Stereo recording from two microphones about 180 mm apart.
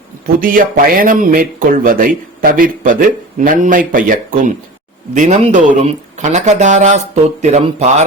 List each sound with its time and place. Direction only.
0.3 s speech: 50° right (ahead or behind)